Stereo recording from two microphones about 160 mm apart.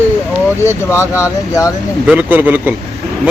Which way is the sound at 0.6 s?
15° left (ahead or behind).